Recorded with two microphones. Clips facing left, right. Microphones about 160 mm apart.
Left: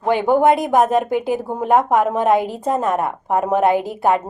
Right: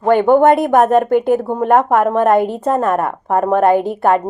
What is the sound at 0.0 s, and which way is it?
Speech, 50° right (ahead or behind).